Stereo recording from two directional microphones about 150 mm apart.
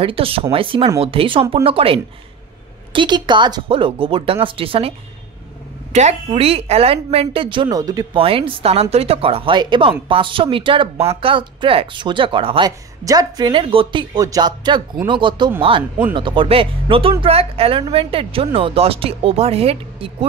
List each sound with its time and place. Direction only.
0.0 s speech: 40° right (ahead or behind)
5.9 s speech: 45° right (ahead or behind); by 8.2 s 25° right (ahead or behind)
8.2 s speech: 35° right (ahead or behind)